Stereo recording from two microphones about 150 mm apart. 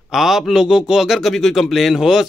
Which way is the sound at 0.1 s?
Centre (ahead or behind).